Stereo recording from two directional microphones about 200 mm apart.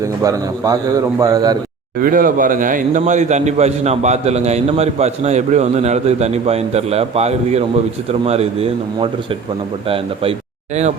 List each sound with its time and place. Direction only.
0.2 s a man's voice: 15° right (ahead or behind)
2.0 s a man's voice: 45° right (ahead or behind)